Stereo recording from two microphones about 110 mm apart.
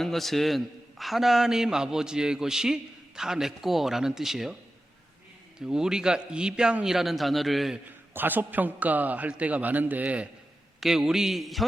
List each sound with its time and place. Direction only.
0.0 s a man's voice: centre (ahead or behind)
5.5 s a man's voice: 5° right (ahead or behind)
7.9 s a man's voice: 15° right (ahead or behind); by 11.6 s centre (ahead or behind)